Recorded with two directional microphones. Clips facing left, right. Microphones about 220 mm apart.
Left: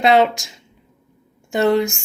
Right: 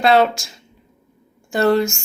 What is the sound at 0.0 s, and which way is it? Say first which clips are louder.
Speech: even; 20° left (ahead or behind).